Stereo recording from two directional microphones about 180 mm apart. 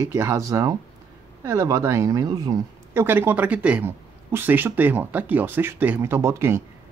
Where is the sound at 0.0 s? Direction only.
15° right (ahead or behind).